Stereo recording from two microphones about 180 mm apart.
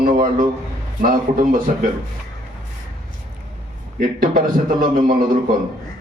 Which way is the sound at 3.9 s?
50° right (ahead or behind).